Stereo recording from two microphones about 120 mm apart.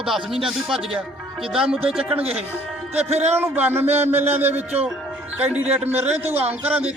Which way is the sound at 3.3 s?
15° right (ahead or behind).